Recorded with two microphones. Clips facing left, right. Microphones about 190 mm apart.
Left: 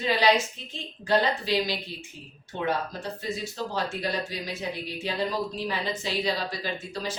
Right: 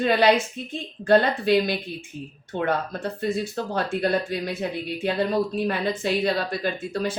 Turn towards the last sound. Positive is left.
turn(degrees=-55)  # may be behind; listen again after turning